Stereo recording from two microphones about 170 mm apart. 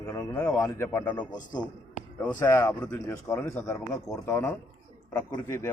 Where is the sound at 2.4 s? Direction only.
15° left (ahead or behind).